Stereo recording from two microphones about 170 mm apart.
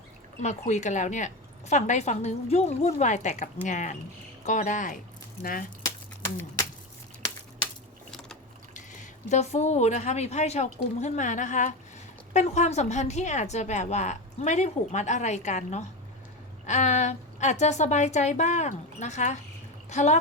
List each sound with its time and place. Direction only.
0.4 s a woman's voice: 45° left (ahead or behind)
5.4 s speech: 60° left (ahead or behind)
9.3 s a woman's voice: 40° left (ahead or behind)